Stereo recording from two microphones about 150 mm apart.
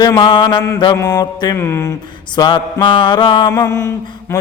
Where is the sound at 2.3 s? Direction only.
30° left (ahead or behind).